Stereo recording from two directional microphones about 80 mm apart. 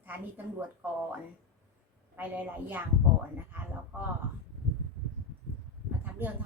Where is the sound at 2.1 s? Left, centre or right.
Right.